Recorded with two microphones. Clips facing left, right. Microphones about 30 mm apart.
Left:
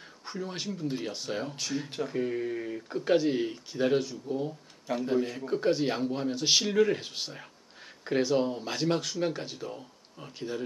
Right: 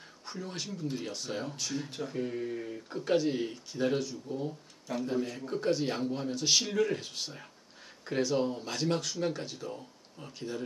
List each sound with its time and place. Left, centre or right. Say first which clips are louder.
0.2 s speech: left 3 dB; centre